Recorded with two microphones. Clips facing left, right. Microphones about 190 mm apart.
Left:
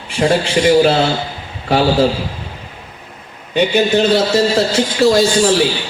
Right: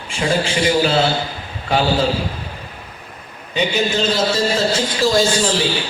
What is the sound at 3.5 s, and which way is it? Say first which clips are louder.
A man's voice: left 6 dB; 65° left (ahead or behind).